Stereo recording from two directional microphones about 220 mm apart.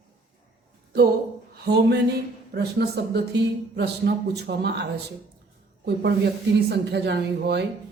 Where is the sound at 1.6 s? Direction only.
50° right (ahead or behind).